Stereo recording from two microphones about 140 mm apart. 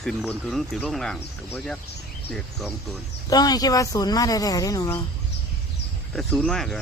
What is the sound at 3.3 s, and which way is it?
Speech, 30° left (ahead or behind).